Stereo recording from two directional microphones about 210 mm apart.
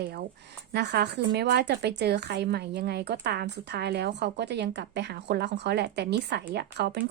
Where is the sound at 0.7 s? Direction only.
50° right (ahead or behind).